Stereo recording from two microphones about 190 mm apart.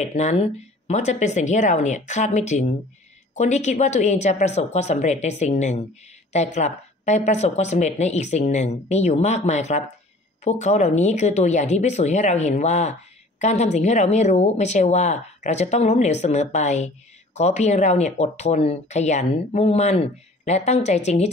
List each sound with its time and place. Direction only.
0.0 s speech: 35° left (ahead or behind)